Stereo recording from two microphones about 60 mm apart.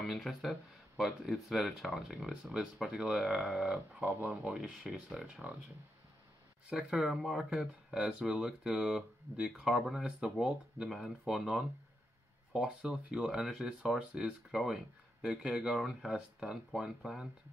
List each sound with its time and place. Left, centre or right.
0.0 s speech: centre
3.9 s speech: right
4.3 s speech: centre
6.7 s speech: centre